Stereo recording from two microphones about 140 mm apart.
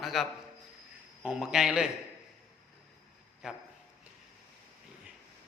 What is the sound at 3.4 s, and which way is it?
Speech, 5° right (ahead or behind).